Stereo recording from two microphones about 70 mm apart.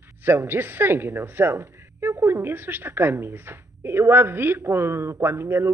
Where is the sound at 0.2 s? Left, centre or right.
Right.